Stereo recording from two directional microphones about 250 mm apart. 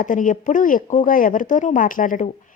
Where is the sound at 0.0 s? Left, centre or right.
Left.